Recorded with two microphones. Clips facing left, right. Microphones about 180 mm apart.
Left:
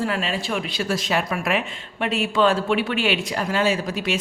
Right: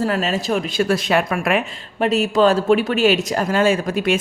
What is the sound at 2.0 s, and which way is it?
Speech, 40° right (ahead or behind).